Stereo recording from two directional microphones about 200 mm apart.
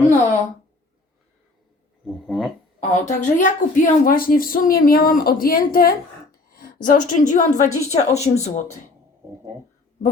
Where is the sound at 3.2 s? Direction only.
40° left (ahead or behind).